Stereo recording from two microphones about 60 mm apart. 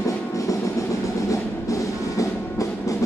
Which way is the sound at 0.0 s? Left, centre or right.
Left.